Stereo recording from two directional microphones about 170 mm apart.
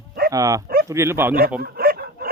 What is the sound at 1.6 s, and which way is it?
Bow-wow, 65° right (ahead or behind).